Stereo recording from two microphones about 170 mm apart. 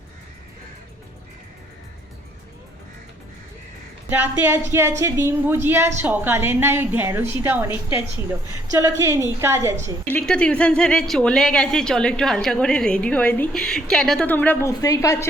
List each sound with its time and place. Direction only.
4.1 s a woman's voice: 10° right (ahead or behind)
8.7 s a woman's voice: 15° right (ahead or behind)
10.1 s speech: 5° left (ahead or behind)
14.7 s a woman's voice: 20° left (ahead or behind)